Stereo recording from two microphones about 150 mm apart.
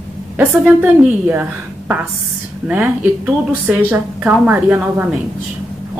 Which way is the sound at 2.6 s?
10° right (ahead or behind).